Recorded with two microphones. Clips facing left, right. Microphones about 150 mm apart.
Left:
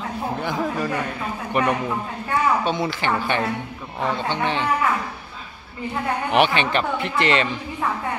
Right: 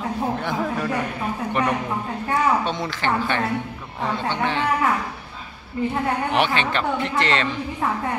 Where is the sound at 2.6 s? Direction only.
10° left (ahead or behind).